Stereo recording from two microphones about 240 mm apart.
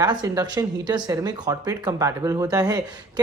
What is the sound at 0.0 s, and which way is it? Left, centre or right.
A man's voice, centre.